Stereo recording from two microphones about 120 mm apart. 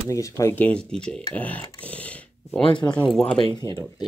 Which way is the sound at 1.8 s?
10° left (ahead or behind).